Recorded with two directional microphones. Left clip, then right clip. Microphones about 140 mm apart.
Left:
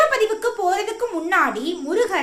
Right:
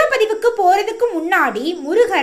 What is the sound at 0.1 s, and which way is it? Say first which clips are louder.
A woman's voice: right 5 dB; 15° right (ahead or behind).